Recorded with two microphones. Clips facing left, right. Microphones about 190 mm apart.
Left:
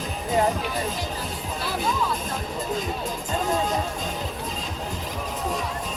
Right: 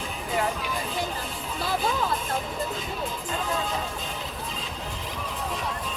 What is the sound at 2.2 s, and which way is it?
Music, 40° left (ahead or behind).